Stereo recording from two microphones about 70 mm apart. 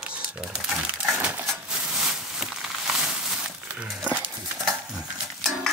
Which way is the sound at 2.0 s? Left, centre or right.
Centre.